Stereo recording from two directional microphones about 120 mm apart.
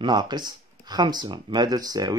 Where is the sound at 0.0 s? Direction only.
35° right (ahead or behind).